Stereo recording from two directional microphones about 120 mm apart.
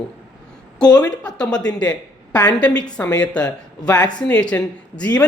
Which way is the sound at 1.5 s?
35° left (ahead or behind).